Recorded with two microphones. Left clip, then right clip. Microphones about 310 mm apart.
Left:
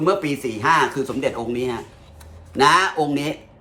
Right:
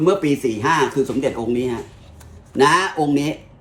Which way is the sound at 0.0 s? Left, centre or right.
Centre.